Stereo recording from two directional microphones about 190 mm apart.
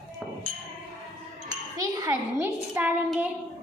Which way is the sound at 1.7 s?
15° right (ahead or behind).